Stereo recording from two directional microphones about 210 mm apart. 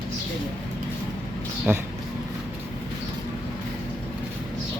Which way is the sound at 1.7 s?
10° right (ahead or behind).